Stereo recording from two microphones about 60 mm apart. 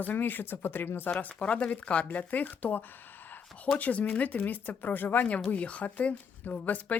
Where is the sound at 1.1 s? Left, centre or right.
Left.